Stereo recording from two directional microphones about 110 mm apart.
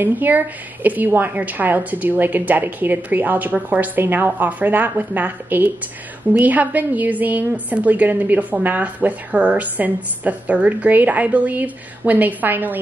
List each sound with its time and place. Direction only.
0.0 s a woman's voice: 15° right (ahead or behind)